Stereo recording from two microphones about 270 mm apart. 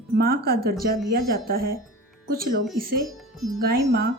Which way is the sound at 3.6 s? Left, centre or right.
Right.